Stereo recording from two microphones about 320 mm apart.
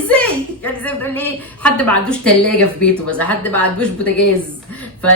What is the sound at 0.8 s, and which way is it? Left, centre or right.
A woman's voice, centre.